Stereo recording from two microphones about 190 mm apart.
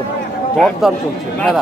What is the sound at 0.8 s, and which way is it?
Speech, 5° right (ahead or behind).